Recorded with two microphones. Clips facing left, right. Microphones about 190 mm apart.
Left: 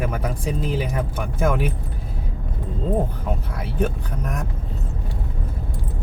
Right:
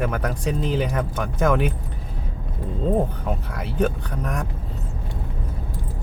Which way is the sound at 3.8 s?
5° left (ahead or behind).